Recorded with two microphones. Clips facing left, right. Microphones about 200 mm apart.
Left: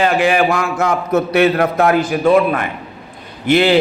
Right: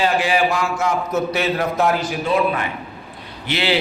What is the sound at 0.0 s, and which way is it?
A man's voice, 55° left (ahead or behind).